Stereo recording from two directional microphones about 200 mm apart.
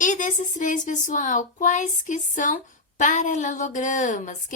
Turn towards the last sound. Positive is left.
turn(degrees=40)  # may be behind; listen again after turning